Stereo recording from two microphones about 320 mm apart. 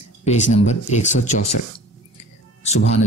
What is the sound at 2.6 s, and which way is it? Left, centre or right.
Speech, left.